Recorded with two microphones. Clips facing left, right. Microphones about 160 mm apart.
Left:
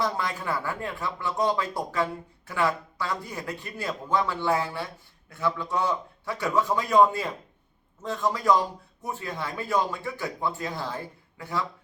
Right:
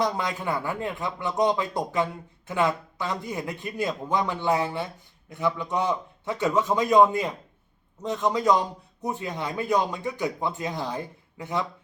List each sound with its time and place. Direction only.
0.0 s a man's voice: 20° right (ahead or behind)